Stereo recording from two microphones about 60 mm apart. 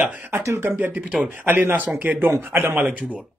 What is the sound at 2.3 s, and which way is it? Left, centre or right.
Speech, right.